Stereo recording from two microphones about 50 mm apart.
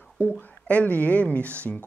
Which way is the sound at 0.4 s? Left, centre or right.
Left.